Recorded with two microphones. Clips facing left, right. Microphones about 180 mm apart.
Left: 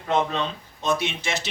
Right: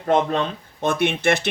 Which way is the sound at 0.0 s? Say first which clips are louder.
Right 4 dB; 50° right (ahead or behind).